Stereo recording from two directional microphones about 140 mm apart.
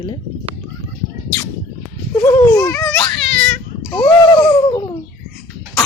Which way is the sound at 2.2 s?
25° left (ahead or behind).